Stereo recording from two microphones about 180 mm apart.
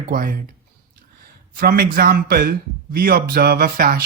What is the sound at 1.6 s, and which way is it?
Speech, 55° right (ahead or behind).